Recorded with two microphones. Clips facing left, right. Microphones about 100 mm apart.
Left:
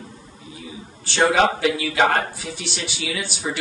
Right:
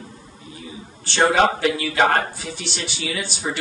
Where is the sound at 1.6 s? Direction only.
5° left (ahead or behind).